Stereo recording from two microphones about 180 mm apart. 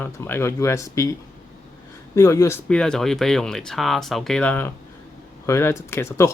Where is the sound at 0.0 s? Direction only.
10° left (ahead or behind).